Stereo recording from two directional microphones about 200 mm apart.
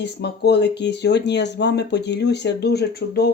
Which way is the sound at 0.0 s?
55° left (ahead or behind).